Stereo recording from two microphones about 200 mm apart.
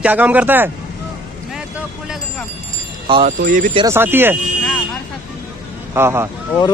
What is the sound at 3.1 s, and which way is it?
Speech, 25° right (ahead or behind).